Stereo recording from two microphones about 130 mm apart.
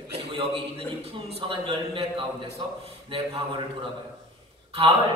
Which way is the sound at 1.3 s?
45° right (ahead or behind).